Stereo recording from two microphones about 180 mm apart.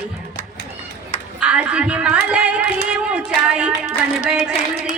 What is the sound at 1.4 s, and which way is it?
A woman's voice, 5° right (ahead or behind).